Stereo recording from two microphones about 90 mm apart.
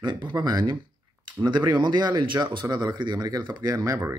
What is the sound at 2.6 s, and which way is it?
Speech, 35° right (ahead or behind).